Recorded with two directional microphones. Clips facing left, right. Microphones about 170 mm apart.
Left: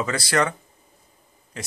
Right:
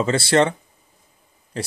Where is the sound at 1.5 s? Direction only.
35° right (ahead or behind).